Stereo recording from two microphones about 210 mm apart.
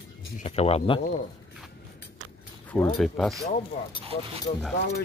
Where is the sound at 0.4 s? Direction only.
30° left (ahead or behind).